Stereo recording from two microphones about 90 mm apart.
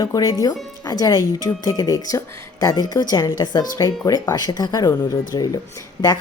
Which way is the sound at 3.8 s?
40° left (ahead or behind).